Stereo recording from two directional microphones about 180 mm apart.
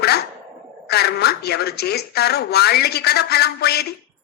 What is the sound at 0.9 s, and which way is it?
A woman's voice, 65° left (ahead or behind).